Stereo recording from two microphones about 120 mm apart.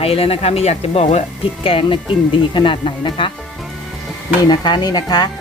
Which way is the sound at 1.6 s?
50° left (ahead or behind).